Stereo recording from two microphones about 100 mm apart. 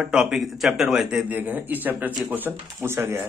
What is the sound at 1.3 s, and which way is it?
Speech, 15° right (ahead or behind).